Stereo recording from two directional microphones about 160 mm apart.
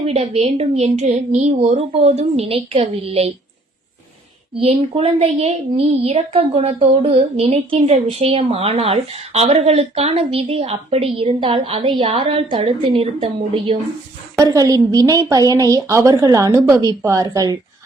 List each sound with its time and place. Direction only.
0.0 s speech: 40° right (ahead or behind)
4.5 s speech: 35° right (ahead or behind)
14.3 s a woman's voice: 20° right (ahead or behind)